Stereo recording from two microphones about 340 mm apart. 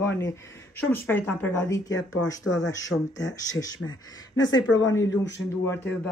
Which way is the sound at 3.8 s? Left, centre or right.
Left.